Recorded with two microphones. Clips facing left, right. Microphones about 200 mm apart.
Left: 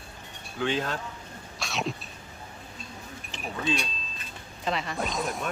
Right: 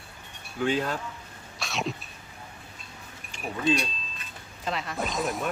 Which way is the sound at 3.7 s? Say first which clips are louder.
Right 6 dB; centre (ahead or behind).